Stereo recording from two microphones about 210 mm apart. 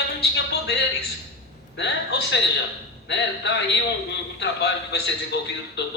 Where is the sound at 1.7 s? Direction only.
55° left (ahead or behind).